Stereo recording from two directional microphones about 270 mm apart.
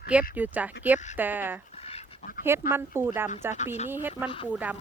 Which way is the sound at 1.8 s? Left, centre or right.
Left.